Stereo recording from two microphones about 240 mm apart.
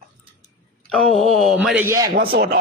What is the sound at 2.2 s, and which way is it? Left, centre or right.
Speech, right.